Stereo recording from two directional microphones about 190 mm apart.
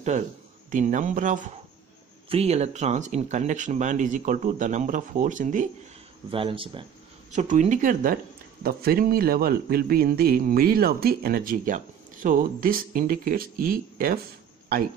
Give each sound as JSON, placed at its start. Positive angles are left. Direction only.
{"t": 0.7, "sound": "speech", "side_deg": -40}
{"t": 2.2, "sound": "speech", "side_deg": -35}
{"t": 6.3, "sound": "speech", "side_deg": -30}